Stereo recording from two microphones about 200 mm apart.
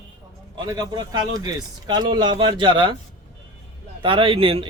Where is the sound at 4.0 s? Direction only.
25° right (ahead or behind).